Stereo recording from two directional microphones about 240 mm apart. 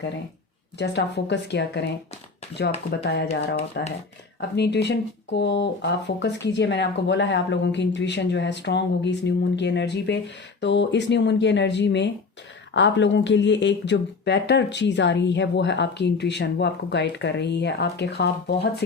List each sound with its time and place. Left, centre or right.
0.8 s speech: left
3.0 s speech: left